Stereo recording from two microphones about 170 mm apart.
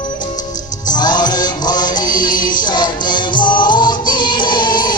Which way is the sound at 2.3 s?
55° left (ahead or behind).